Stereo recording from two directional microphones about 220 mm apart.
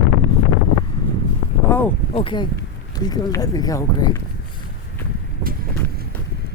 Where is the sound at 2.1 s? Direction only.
20° left (ahead or behind).